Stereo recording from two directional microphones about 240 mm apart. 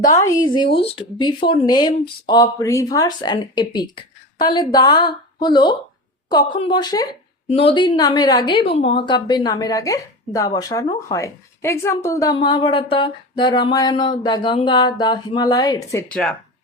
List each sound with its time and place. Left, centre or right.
0.0 s speech: centre